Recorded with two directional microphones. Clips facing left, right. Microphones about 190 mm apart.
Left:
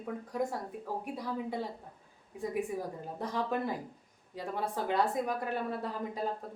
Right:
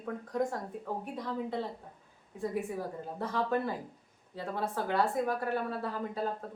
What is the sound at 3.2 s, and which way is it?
Speech, 15° left (ahead or behind).